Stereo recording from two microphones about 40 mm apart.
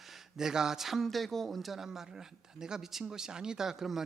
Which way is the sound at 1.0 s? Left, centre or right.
Centre.